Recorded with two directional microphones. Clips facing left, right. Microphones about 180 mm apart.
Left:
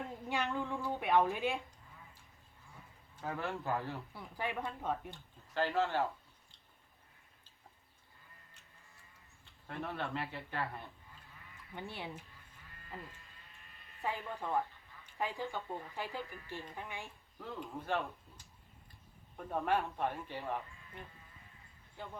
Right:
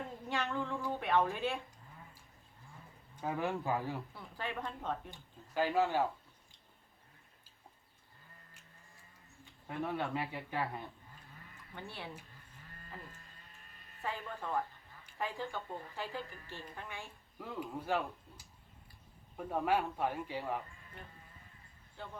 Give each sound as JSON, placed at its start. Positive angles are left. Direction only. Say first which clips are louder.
{"t": 0.3, "sound": "a woman's voice", "louder": "even", "side_deg": 15}
{"t": 3.2, "sound": "speech", "louder": "right 3 dB", "side_deg": -15}
{"t": 4.1, "sound": "a woman's voice", "louder": "left 2 dB", "side_deg": 15}
{"t": 5.1, "sound": "speech", "louder": "right 1 dB", "side_deg": -10}
{"t": 9.6, "sound": "speech", "louder": "right 3 dB", "side_deg": -15}
{"t": 11.7, "sound": "a woman's voice", "louder": "left 2 dB", "side_deg": 15}
{"t": 12.7, "sound": "electric shaver", "louder": "left 2 dB", "side_deg": -45}
{"t": 14.0, "sound": "a woman's voice", "louder": "left 2 dB", "side_deg": 15}
{"t": 17.4, "sound": "speech", "louder": "right 2 dB", "side_deg": -10}
{"t": 22.0, "sound": "a woman's voice", "louder": "left 1 dB", "side_deg": 15}